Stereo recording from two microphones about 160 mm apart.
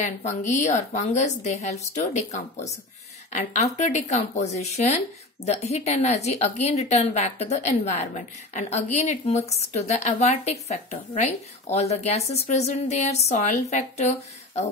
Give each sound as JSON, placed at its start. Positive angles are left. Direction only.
{"t": 0.0, "sound": "speech", "side_deg": 50}